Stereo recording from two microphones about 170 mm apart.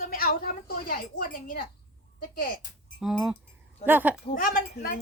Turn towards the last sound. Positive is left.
turn(degrees=60)  # may be behind; listen again after turning